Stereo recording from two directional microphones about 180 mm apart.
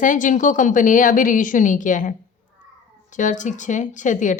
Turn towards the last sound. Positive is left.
turn(degrees=45)  # may be behind; listen again after turning